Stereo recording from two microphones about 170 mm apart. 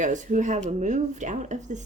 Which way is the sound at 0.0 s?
45° right (ahead or behind).